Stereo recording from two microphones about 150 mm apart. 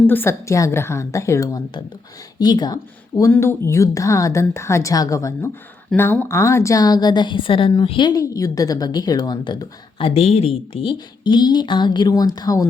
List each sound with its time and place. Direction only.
0.1 s a woman's voice: 15° left (ahead or behind)